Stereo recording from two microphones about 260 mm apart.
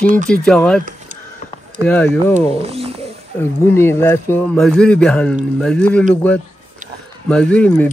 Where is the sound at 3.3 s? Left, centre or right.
Centre.